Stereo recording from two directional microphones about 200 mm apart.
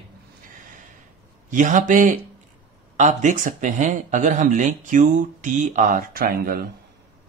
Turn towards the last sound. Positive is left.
turn(degrees=-50)  # may be behind; listen again after turning